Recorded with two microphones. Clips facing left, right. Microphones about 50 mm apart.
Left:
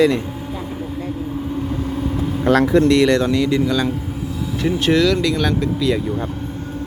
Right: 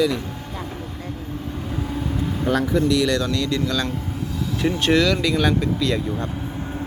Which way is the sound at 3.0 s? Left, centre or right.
Left.